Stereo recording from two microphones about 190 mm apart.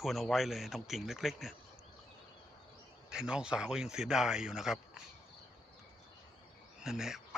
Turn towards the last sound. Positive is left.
turn(degrees=-5)  # may be behind; listen again after turning